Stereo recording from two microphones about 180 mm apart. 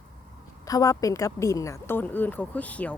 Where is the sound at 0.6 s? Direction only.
20° left (ahead or behind).